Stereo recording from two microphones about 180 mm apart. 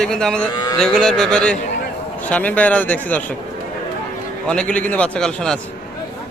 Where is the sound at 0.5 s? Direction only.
20° left (ahead or behind).